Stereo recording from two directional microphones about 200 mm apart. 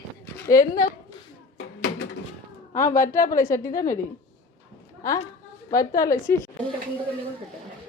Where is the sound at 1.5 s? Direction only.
60° left (ahead or behind).